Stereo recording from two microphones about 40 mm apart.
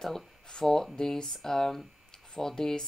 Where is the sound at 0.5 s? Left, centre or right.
Centre.